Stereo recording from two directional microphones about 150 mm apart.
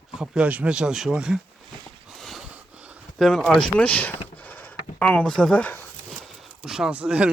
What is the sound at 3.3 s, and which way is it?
Speech, centre (ahead or behind).